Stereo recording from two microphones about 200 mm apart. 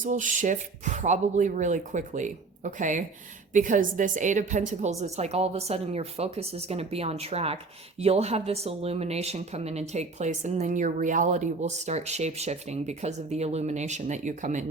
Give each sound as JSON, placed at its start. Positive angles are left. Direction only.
{"t": 0.0, "sound": "a woman's voice", "side_deg": -40}